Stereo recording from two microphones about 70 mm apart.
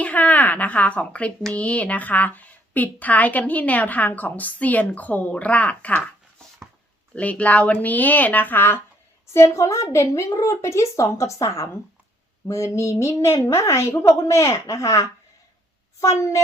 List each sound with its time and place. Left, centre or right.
0.0 s a woman's voice: left
7.2 s a woman's voice: left
9.3 s a woman's voice: left